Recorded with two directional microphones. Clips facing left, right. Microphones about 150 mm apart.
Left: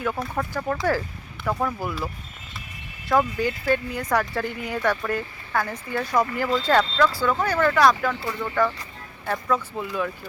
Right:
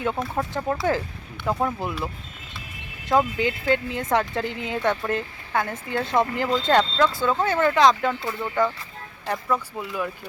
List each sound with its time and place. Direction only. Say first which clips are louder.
0.3 s speech: right 1 dB; 25° right (ahead or behind)
3.1 s speech: right 1 dB; 20° right (ahead or behind)
9.7 s speech: left 2 dB; 5° right (ahead or behind)